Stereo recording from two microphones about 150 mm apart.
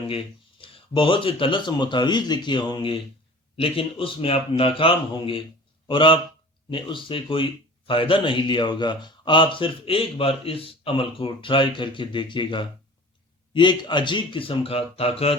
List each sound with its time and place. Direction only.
0.6 s speech: 35° left (ahead or behind)